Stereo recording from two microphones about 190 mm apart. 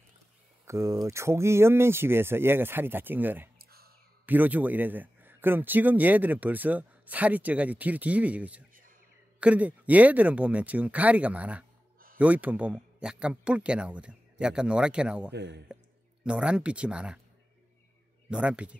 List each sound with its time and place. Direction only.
0.7 s speech: 15° right (ahead or behind)
3.5 s a sound: 55° right (ahead or behind)
4.3 s speech: 10° right (ahead or behind)
15.3 s speech: 65° right (ahead or behind)
16.3 s speech: 5° right (ahead or behind)
18.3 s speech: 5° right (ahead or behind)